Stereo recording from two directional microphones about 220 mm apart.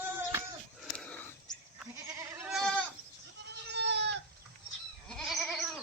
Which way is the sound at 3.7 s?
50° right (ahead or behind).